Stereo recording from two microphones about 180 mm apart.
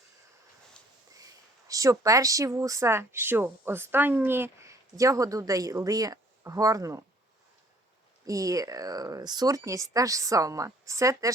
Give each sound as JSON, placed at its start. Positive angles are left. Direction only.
{"t": 1.1, "sound": "speech", "side_deg": -20}
{"t": 8.3, "sound": "speech", "side_deg": -20}